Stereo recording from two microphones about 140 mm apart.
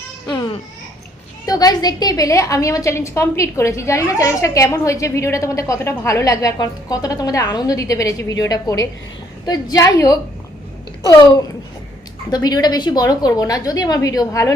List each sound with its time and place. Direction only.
1.5 s a woman's voice: 25° left (ahead or behind)